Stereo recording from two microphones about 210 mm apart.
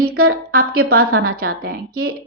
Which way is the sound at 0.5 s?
45° right (ahead or behind).